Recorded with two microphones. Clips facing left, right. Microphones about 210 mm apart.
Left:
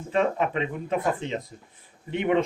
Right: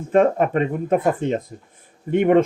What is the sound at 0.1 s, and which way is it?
Speech, 50° right (ahead or behind).